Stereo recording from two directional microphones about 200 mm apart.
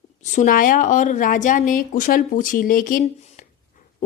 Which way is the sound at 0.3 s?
40° left (ahead or behind).